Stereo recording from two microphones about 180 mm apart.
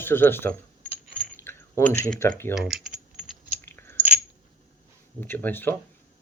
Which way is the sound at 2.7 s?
Centre (ahead or behind).